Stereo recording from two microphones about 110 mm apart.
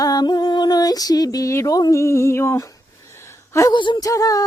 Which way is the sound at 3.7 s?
45° left (ahead or behind).